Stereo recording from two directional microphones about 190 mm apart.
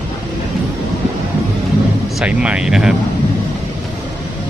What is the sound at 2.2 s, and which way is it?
Speech, 5° right (ahead or behind).